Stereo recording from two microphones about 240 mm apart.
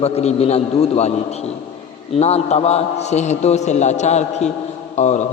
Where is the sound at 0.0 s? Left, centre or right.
Left.